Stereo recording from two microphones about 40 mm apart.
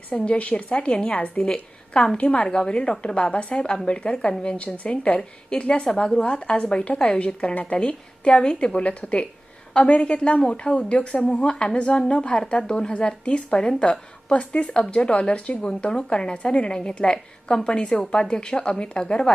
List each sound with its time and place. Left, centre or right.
0.3 s a woman's voice: left
2.2 s a woman's voice: left
2.5 s speech: left